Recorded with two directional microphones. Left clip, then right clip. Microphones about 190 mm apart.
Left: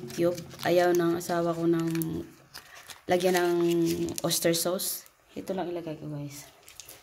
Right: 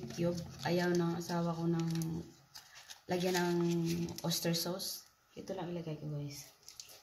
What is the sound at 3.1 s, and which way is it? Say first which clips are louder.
Speech: left 10 dB; 55° left (ahead or behind).